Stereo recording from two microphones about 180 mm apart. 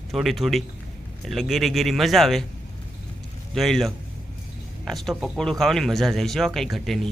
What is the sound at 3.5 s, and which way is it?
A man's voice, centre (ahead or behind).